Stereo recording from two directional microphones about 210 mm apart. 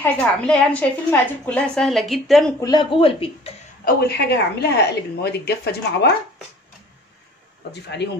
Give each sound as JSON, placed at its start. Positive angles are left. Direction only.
{"t": 0.0, "sound": "a woman's voice", "side_deg": 5}
{"t": 2.6, "sound": "speech", "side_deg": 20}
{"t": 3.8, "sound": "speech", "side_deg": 50}
{"t": 7.7, "sound": "speech", "side_deg": 55}